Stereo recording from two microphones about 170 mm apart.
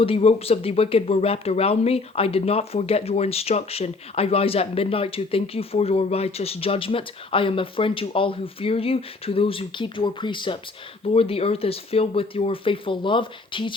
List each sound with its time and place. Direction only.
0.0 s speech: 35° left (ahead or behind)